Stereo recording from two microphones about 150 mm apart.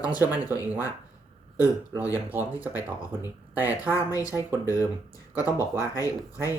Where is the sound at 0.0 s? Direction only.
25° left (ahead or behind).